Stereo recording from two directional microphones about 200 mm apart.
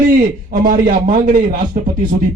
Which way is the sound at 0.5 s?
45° right (ahead or behind).